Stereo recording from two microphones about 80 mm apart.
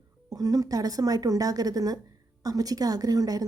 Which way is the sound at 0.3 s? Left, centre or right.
Right.